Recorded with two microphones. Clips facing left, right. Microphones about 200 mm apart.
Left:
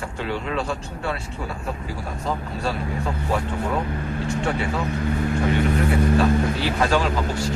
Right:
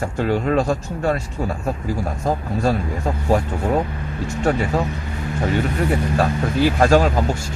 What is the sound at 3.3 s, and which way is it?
Speech, 40° right (ahead or behind).